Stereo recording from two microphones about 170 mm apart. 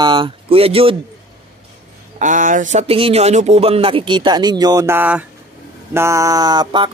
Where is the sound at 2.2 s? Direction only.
50° right (ahead or behind); by 6.9 s 25° right (ahead or behind).